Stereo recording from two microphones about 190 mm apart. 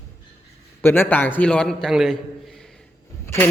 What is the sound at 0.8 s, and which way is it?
A man's voice, 10° left (ahead or behind).